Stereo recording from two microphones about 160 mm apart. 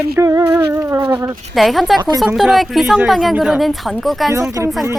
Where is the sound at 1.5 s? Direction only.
Centre (ahead or behind).